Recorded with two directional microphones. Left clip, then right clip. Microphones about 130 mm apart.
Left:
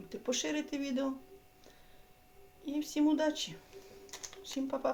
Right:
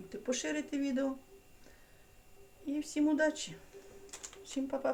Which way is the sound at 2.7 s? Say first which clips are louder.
Left 1 dB; 30° left (ahead or behind).